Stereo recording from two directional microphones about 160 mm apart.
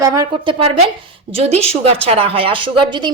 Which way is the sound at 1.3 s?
40° right (ahead or behind).